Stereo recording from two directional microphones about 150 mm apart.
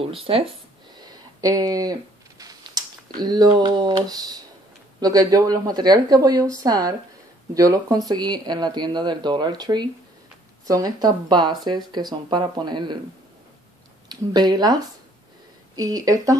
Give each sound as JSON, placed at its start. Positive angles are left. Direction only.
{"t": 0.0, "sound": "speech", "side_deg": -40}
{"t": 1.0, "sound": "a sound", "side_deg": -25}
{"t": 5.0, "sound": "speech", "side_deg": -25}
{"t": 14.0, "sound": "speech", "side_deg": -25}
{"t": 15.8, "sound": "speech", "side_deg": -25}